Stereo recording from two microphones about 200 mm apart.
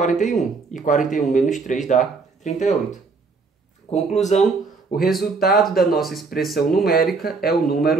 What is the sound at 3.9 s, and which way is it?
Speech, 35° left (ahead or behind).